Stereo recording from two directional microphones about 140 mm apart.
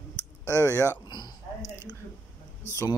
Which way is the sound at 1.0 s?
30° left (ahead or behind).